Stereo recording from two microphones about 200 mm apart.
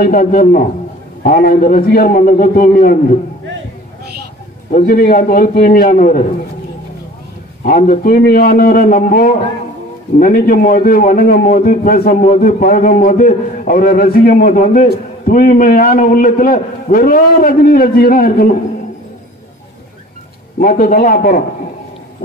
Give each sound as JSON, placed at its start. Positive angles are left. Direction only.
{"t": 0.0, "sound": "a man's voice", "side_deg": 45}
{"t": 4.7, "sound": "a man's voice", "side_deg": 45}
{"t": 7.6, "sound": "a man's voice", "side_deg": 45}
{"t": 20.6, "sound": "a man's voice", "side_deg": 45}